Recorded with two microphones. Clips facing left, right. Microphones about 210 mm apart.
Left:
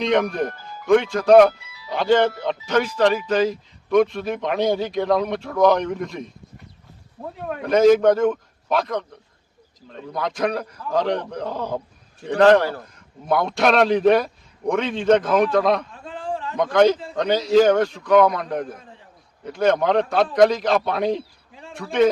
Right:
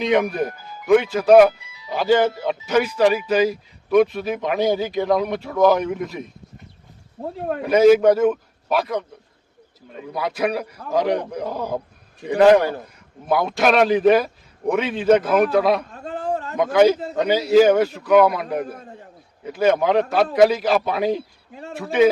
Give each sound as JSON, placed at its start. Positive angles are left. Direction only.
{"t": 0.0, "sound": "a man's voice", "side_deg": -5}
{"t": 1.6, "sound": "music", "side_deg": -20}
{"t": 1.9, "sound": "a man's voice", "side_deg": -5}
{"t": 7.2, "sound": "speech", "side_deg": -35}
{"t": 7.6, "sound": "a man's voice", "side_deg": -5}
{"t": 15.9, "sound": "a sound", "side_deg": -45}
{"t": 16.6, "sound": "a man's voice", "side_deg": -5}
{"t": 18.8, "sound": "a man's voice", "side_deg": -45}
{"t": 19.5, "sound": "a man's voice", "side_deg": -5}